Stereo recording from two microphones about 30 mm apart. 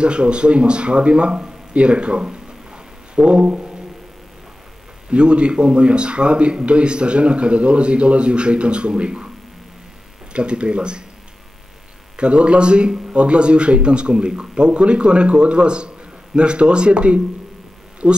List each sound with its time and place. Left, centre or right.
0.0 s a man's voice: right
2.2 s a sound: right
5.1 s a man's voice: right
10.3 s a man's voice: right
12.2 s a man's voice: right